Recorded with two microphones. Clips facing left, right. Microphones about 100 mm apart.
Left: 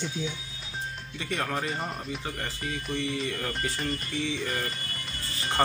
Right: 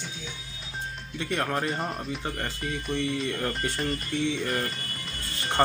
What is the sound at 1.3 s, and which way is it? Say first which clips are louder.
Speech: right 2 dB; 5° right (ahead or behind).